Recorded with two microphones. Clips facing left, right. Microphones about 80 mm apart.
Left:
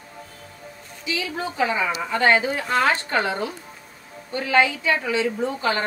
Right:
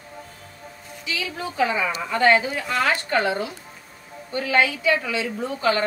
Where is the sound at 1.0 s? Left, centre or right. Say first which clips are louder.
Left 2 dB; left.